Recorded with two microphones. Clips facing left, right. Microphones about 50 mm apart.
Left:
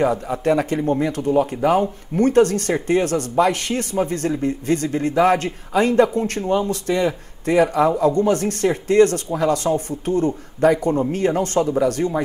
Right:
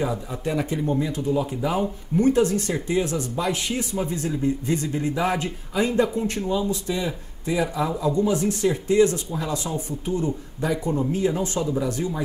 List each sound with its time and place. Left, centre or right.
0.0 s a man's voice: left